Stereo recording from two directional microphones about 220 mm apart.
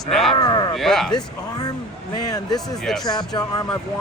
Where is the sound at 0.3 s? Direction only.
20° left (ahead or behind).